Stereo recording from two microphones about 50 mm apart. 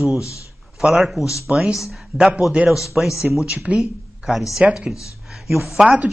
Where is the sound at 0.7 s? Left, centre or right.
Centre.